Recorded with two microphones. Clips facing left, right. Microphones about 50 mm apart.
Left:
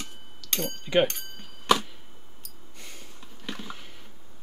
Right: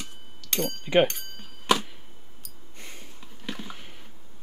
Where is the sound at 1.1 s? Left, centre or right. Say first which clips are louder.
Even; centre.